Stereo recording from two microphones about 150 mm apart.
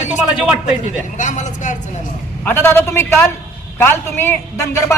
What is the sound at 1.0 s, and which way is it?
Speech, 55° left (ahead or behind).